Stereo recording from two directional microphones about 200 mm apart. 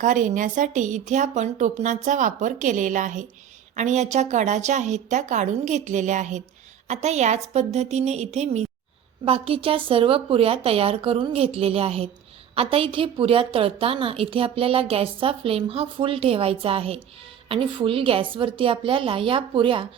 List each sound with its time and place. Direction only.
0.0 s a woman's voice: 40° right (ahead or behind)